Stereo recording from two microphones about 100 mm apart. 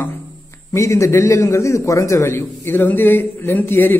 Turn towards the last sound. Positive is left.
turn(degrees=20)  # may be behind; listen again after turning